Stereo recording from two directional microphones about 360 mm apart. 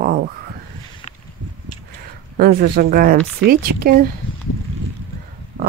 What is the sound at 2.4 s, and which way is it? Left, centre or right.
Speech, right.